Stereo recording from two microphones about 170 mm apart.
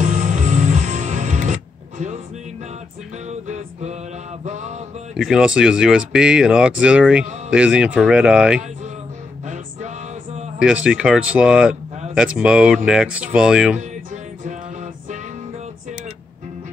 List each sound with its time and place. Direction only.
0.0 s music: 45° right (ahead or behind)
3.3 s music: 40° right (ahead or behind)
5.1 s speech: 5° right (ahead or behind)
9.5 s music: 45° right (ahead or behind)
10.6 s speech: 5° right (ahead or behind)
13.7 s music: 45° right (ahead or behind)